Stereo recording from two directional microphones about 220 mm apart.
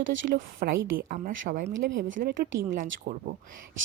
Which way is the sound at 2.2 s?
45° right (ahead or behind).